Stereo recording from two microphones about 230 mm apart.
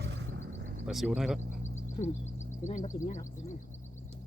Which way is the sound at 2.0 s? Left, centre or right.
Left.